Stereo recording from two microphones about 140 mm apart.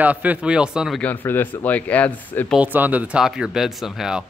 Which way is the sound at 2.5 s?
10° right (ahead or behind).